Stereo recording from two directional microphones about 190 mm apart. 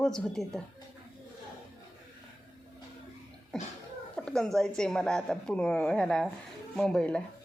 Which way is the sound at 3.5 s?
5° left (ahead or behind).